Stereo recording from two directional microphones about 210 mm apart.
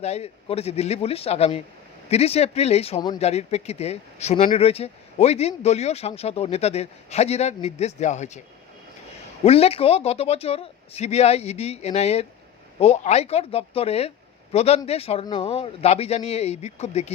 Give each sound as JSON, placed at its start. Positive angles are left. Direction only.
{"t": 0.0, "sound": "speech", "side_deg": 30}
{"t": 9.4, "sound": "speech", "side_deg": 30}